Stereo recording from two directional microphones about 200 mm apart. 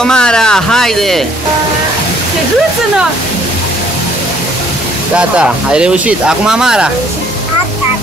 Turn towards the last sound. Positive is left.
turn(degrees=-5)  # may be behind; listen again after turning